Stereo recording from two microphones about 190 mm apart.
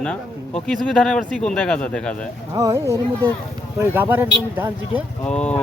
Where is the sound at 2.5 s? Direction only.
15° right (ahead or behind).